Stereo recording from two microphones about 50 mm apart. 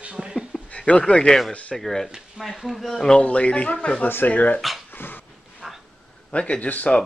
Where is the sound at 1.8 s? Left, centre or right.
Centre.